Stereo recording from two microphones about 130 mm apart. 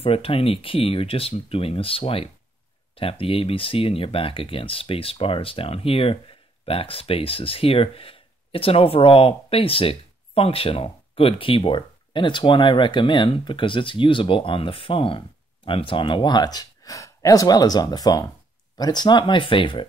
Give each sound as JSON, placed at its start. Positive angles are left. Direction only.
{"t": 0.0, "sound": "speech", "side_deg": 45}